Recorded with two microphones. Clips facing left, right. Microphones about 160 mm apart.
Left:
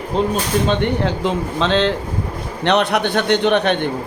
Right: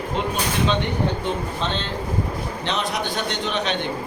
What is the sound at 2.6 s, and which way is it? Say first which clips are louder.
A man's voice: left 11 dB; 65° left (ahead or behind).